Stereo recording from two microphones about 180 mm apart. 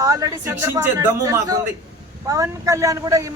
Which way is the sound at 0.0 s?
20° right (ahead or behind).